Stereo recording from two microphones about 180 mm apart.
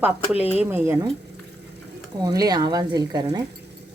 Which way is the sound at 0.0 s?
10° right (ahead or behind).